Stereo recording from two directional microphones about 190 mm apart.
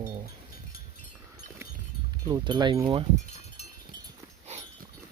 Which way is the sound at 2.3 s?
20° right (ahead or behind).